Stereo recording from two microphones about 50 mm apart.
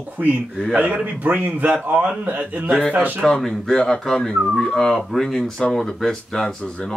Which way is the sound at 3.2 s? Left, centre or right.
Centre.